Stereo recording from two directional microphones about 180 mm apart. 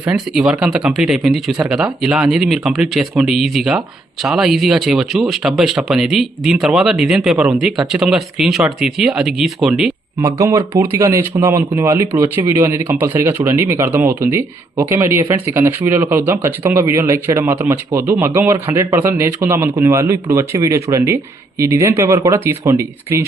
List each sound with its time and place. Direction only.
0.0 s speech: 5° right (ahead or behind)
10.2 s speech: 15° right (ahead or behind)